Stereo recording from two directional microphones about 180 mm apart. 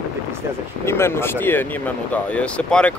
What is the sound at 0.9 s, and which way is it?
Speech, 15° left (ahead or behind).